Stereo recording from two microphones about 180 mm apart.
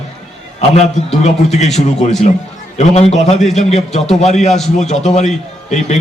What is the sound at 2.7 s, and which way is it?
A man's voice, 35° left (ahead or behind).